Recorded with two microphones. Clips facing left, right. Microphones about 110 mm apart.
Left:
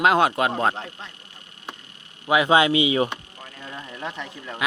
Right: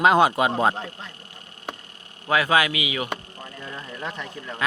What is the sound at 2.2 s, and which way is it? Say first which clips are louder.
Speech: left 3 dB; 20° left (ahead or behind).